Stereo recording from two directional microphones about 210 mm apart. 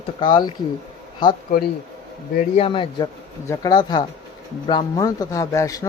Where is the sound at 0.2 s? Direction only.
20° left (ahead or behind).